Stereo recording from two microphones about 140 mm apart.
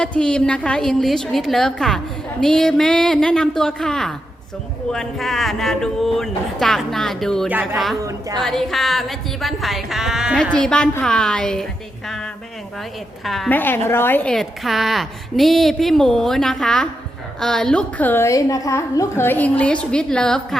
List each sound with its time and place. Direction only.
0.0 s a woman's voice: 10° left (ahead or behind)
7.4 s speech: 10° right (ahead or behind)
8.0 s a woman's voice: 30° right (ahead or behind)
8.4 s a woman's voice: 5° left (ahead or behind)
13.5 s a woman's voice: 15° left (ahead or behind)